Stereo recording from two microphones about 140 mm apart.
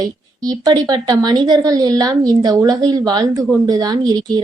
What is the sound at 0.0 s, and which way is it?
A woman's voice, 25° right (ahead or behind).